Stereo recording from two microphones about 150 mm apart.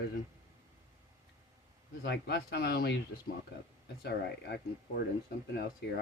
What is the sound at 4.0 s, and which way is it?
Speech, 90° left.